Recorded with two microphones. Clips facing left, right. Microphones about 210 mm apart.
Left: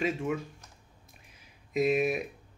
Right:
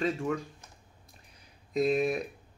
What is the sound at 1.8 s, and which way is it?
Speech, 5° left (ahead or behind).